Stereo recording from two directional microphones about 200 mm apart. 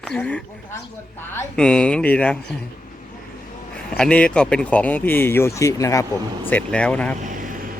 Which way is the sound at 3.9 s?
5° left (ahead or behind).